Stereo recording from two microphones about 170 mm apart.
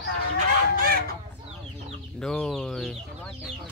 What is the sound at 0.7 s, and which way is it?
Speech, 60° right (ahead or behind).